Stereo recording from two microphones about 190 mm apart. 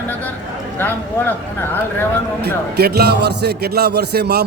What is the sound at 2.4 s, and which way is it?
A man's voice, 60° right (ahead or behind).